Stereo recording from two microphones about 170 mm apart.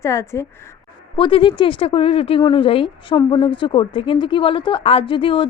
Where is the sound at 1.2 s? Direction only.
30° left (ahead or behind).